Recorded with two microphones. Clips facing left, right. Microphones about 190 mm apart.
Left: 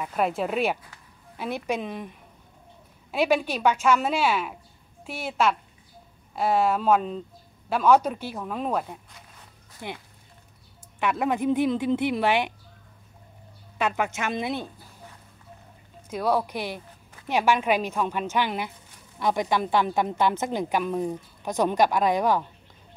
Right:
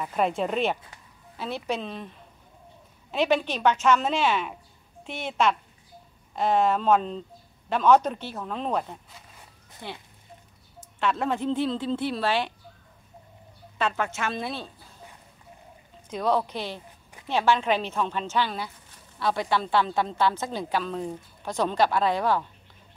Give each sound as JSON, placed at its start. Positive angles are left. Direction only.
{"t": 0.0, "sound": "a woman's voice", "side_deg": 5}
{"t": 13.7, "sound": "a woman's voice", "side_deg": 15}
{"t": 16.1, "sound": "a woman's voice", "side_deg": 10}